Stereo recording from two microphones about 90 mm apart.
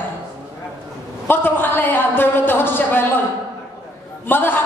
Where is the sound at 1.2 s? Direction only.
25° left (ahead or behind).